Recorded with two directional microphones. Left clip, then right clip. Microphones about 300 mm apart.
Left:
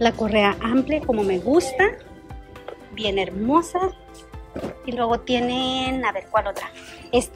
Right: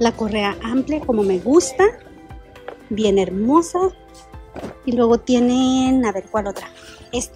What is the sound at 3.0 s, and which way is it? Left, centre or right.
A woman's voice, centre.